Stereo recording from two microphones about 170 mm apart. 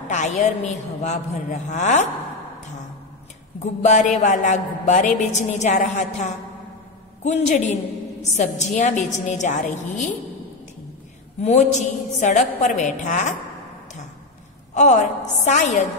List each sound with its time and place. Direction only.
0.1 s a woman's voice: 45° left (ahead or behind)
3.8 s a woman's voice: 45° left (ahead or behind)
11.4 s a woman's voice: 45° left (ahead or behind)
14.7 s a woman's voice: 45° left (ahead or behind)